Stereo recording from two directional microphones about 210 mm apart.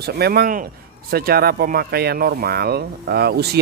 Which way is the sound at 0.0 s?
50° right (ahead or behind).